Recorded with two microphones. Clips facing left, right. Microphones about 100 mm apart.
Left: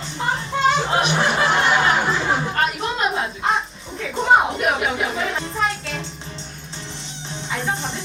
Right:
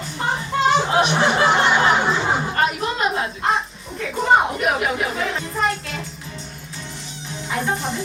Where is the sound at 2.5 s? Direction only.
Centre (ahead or behind).